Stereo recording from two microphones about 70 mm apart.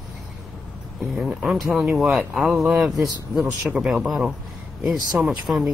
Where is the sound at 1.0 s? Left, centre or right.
Centre.